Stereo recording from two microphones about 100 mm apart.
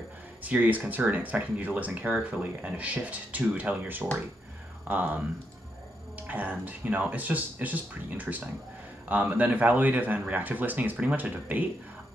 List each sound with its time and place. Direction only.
0.4 s speech: 15° right (ahead or behind)
6.2 s speech: 15° right (ahead or behind)